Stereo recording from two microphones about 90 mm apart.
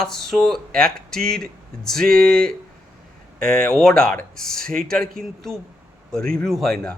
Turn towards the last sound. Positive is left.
turn(degrees=5)  # may be behind; listen again after turning